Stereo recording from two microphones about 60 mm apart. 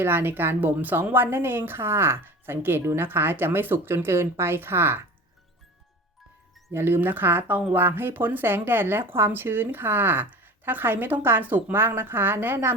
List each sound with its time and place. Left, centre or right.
0.0 s a woman's voice: right
6.7 s a woman's voice: right